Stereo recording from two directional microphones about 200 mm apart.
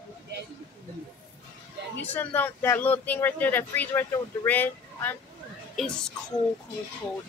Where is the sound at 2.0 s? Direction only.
10° left (ahead or behind).